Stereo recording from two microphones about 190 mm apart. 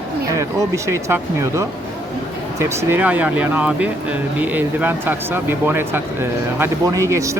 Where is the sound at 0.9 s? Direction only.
15° right (ahead or behind).